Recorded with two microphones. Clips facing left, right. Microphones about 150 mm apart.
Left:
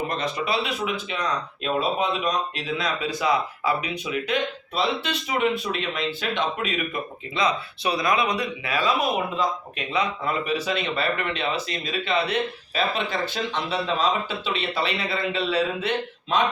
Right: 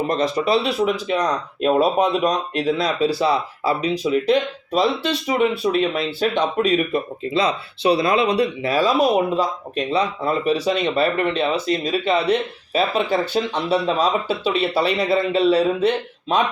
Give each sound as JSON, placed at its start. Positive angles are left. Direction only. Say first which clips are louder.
{"t": 0.1, "sound": "speech", "louder": "right 7 dB", "side_deg": -35}